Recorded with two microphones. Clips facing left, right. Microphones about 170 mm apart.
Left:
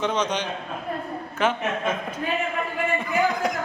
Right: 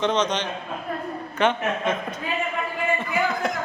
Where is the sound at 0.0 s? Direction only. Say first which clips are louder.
Right 2 dB; 10° left (ahead or behind).